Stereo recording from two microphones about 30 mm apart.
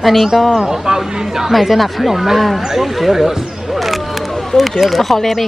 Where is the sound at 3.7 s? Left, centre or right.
Centre.